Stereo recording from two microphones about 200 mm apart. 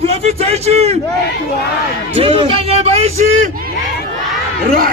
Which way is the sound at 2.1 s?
30° right (ahead or behind).